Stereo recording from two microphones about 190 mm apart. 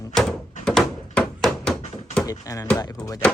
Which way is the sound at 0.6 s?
5° left (ahead or behind).